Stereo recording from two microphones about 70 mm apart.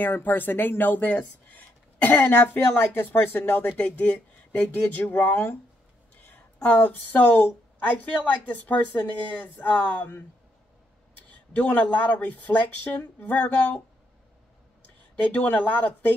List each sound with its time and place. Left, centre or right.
0.0 s speech: left
3.8 s speech: centre
4.6 s speech: left
11.5 s speech: left
15.3 s speech: left